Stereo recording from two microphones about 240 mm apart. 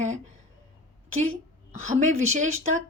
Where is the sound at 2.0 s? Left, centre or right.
Right.